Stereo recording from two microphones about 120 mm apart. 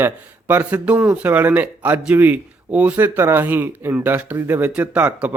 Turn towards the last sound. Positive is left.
turn(degrees=-15)  # may be behind; listen again after turning